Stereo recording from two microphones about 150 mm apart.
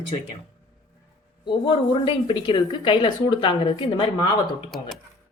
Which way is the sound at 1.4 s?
35° left (ahead or behind).